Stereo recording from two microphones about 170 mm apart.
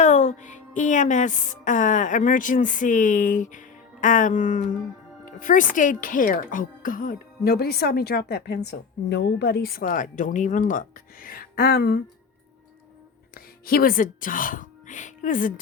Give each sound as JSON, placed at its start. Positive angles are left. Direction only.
{"t": 0.0, "sound": "music", "side_deg": 45}
{"t": 5.2, "sound": "a woman's voice", "side_deg": 50}
{"t": 13.3, "sound": "speech", "side_deg": 60}